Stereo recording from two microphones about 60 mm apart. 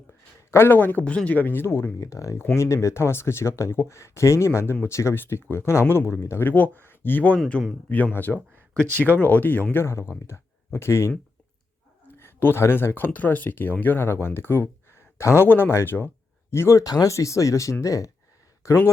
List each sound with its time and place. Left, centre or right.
0.5 s speech: left
1.0 s speech: left
2.0 s speech: left
2.6 s speech: left
5.1 s speech: left
6.4 s speech: left
9.7 s speech: left
16.8 s speech: left
18.6 s speech: left